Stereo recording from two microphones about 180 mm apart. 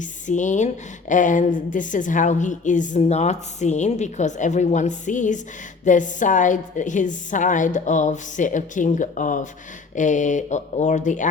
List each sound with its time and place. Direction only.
0.0 s a woman's voice: 45° left (ahead or behind)